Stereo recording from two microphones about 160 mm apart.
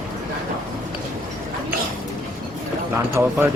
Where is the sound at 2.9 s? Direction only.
10° right (ahead or behind).